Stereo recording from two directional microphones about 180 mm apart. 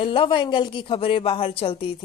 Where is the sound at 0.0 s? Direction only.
30° left (ahead or behind).